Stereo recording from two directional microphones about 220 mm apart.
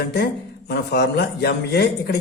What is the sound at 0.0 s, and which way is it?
Speech, 50° left (ahead or behind).